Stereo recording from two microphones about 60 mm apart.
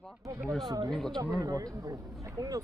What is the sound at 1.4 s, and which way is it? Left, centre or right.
A man's voice, right.